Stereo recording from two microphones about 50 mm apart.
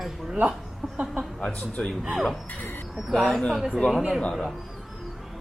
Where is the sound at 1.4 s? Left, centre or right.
Left.